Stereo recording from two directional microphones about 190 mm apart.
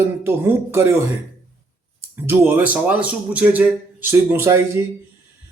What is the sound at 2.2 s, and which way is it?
Speech, 10° right (ahead or behind).